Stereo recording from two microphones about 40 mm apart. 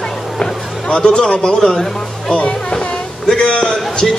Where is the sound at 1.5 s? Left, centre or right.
Centre.